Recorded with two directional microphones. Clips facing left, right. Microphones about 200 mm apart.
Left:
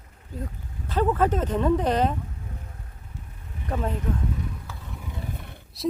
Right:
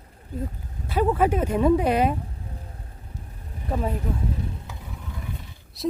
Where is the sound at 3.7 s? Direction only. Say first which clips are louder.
Right 1 dB; 10° right (ahead or behind).